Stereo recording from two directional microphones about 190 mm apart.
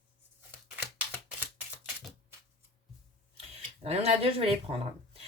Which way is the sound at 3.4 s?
30° right (ahead or behind).